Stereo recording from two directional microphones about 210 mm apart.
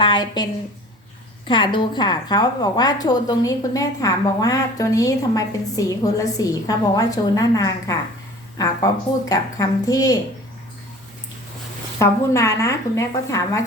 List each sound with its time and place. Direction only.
0.0 s a woman's voice: 20° left (ahead or behind)
1.5 s a woman's voice: 20° left (ahead or behind)
11.9 s a woman's voice: 15° left (ahead or behind)